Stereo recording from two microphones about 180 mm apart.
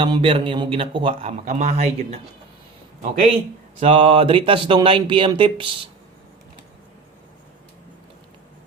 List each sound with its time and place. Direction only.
0.0 s speech: 30° right (ahead or behind)
3.8 s speech: 30° right (ahead or behind)